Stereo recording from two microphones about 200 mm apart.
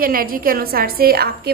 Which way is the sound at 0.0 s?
45° right (ahead or behind).